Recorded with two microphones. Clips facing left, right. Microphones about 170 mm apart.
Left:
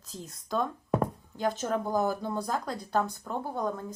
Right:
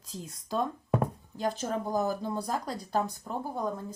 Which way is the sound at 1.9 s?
15° right (ahead or behind).